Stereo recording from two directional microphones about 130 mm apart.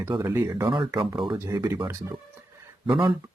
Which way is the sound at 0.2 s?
25° right (ahead or behind).